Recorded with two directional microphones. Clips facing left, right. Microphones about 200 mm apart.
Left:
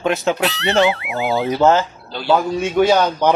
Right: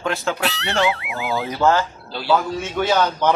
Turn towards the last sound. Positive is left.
turn(degrees=15)  # may be behind; listen again after turning